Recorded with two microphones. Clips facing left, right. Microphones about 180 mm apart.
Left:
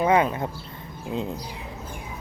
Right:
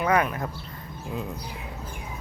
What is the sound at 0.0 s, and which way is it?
Speech, 25° left (ahead or behind).